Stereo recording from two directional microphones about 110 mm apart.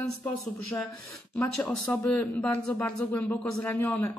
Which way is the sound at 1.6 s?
20° left (ahead or behind).